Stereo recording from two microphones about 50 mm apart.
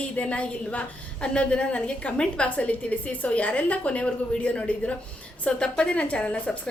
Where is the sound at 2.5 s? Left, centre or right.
Left.